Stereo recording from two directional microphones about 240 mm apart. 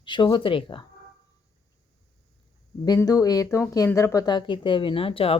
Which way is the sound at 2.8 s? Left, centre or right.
Centre.